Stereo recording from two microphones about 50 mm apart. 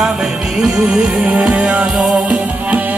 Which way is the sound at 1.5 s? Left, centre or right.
Right.